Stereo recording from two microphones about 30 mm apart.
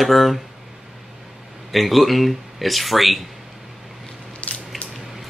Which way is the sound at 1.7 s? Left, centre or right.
Centre.